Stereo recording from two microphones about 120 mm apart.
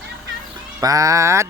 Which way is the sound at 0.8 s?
30° right (ahead or behind).